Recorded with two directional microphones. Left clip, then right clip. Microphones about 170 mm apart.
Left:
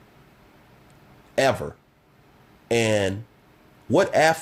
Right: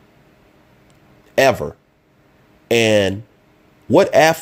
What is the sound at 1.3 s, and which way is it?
Speech, 35° right (ahead or behind).